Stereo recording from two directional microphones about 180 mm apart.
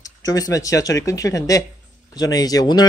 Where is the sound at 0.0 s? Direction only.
20° left (ahead or behind).